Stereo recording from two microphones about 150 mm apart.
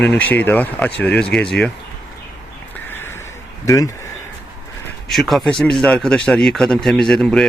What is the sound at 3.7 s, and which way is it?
Speech, 20° left (ahead or behind).